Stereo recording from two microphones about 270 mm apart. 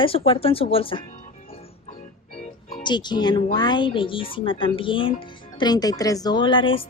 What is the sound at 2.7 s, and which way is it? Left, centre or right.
A woman's voice, centre.